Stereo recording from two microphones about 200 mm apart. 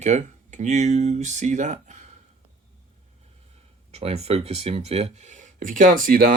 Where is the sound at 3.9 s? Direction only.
30° right (ahead or behind).